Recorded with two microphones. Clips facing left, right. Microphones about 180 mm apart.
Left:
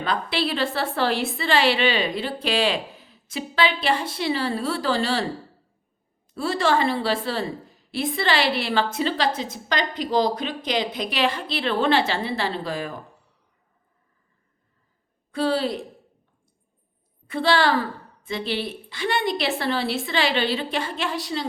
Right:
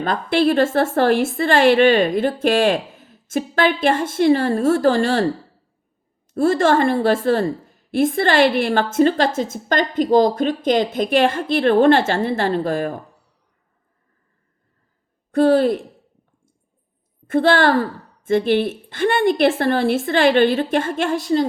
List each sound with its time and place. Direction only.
0.0 s a woman's voice: 50° right (ahead or behind)
6.3 s a woman's voice: 50° right (ahead or behind)
15.3 s a woman's voice: 50° right (ahead or behind)
17.2 s a woman's voice: 50° right (ahead or behind)